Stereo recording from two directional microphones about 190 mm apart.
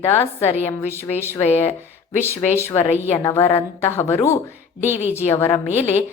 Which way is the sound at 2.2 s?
10° left (ahead or behind).